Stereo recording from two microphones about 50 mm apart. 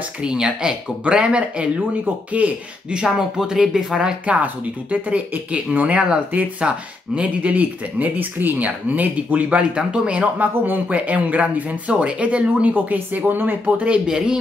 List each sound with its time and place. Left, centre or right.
0.2 s speech: centre
2.9 s speech: centre
4.4 s speech: right
10.5 s speech: right
10.9 s speech: right
14.0 s speech: centre